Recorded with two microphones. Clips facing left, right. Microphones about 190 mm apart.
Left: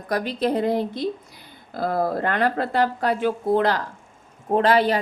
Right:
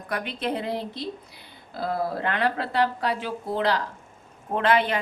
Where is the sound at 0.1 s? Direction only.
35° left (ahead or behind).